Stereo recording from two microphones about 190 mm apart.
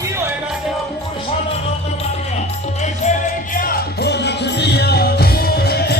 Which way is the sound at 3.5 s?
50° left (ahead or behind).